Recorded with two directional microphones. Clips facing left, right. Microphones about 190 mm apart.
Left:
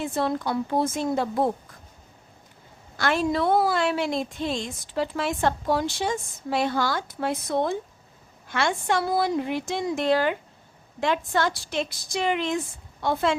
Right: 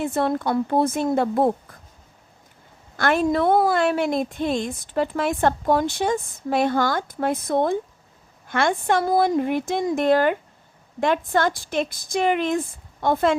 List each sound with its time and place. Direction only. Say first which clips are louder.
0.0 s a woman's voice: right 3 dB; 55° right (ahead or behind)
3.0 s a woman's voice: right 4 dB; 55° right (ahead or behind)